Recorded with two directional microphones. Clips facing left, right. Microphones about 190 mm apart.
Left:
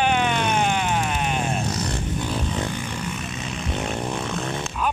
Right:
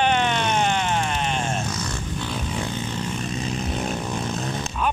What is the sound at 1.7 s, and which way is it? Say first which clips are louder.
Vehicle: left 3 dB; 35° left (ahead or behind).